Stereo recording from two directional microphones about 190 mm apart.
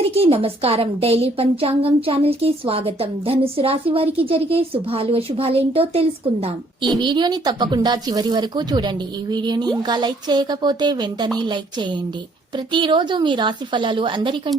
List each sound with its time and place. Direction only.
0.1 s a woman's voice: 30° right (ahead or behind)